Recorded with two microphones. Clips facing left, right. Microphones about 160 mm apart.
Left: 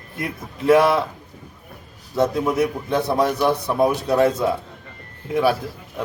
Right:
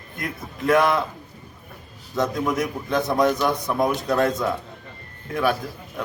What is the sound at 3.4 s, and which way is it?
Speech, 30° left (ahead or behind).